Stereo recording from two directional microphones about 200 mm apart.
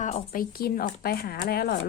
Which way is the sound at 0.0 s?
40° left (ahead or behind).